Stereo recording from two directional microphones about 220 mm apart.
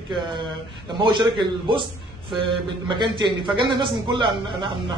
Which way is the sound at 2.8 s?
20° right (ahead or behind).